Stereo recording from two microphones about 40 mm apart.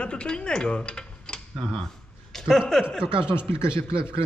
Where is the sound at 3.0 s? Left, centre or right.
Right.